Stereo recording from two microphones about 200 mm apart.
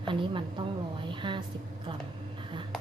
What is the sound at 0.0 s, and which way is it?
A woman's voice, 25° right (ahead or behind).